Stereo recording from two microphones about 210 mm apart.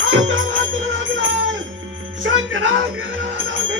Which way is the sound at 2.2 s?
65° right (ahead or behind).